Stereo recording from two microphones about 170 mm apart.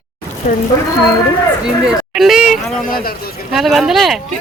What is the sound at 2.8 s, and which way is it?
Speech, 60° left (ahead or behind).